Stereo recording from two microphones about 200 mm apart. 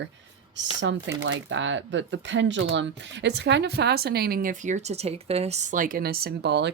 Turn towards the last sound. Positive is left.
turn(degrees=-60)  # may be behind; listen again after turning